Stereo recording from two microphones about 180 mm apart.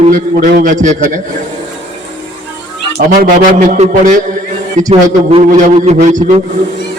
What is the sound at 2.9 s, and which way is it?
A man's voice, 55° right (ahead or behind).